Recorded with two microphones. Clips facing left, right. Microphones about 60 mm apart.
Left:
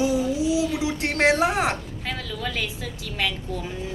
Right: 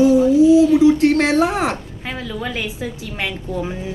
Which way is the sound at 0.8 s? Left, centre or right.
Left.